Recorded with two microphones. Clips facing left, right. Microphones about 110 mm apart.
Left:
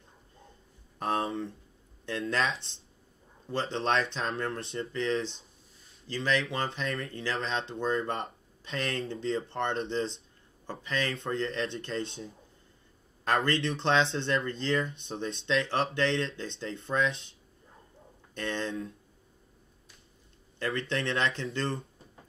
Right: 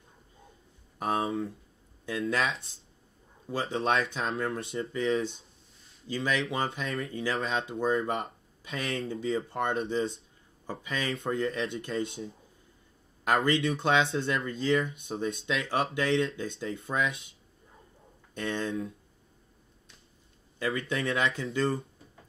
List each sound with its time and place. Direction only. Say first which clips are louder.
0.9 s a man's voice: right 1 dB; 5° right (ahead or behind)
18.3 s speech: right 2 dB; 5° right (ahead or behind)
20.5 s speech: right 1 dB; 10° right (ahead or behind)